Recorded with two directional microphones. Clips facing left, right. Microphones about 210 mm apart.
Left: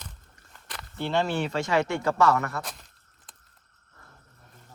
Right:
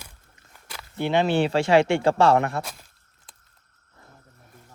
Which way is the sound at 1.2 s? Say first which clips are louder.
Right 7 dB; 90° right.